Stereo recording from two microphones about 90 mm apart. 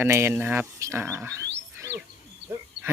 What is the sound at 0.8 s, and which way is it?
Speech, 30° right (ahead or behind).